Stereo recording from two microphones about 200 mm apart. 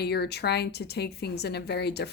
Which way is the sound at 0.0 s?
55° left (ahead or behind).